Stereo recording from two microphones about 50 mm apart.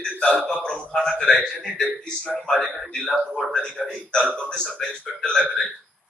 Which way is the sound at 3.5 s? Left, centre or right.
Centre.